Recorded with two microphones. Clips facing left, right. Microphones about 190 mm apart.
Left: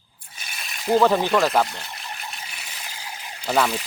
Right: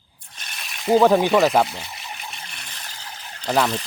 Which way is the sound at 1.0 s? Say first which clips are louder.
Right 4 dB; 10° right (ahead or behind).